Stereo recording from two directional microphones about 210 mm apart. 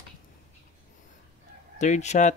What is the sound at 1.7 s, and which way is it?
Speech, 35° left (ahead or behind).